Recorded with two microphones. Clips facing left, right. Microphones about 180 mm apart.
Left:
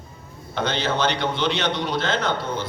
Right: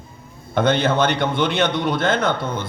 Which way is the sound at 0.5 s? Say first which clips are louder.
Right 6 dB; 55° right (ahead or behind).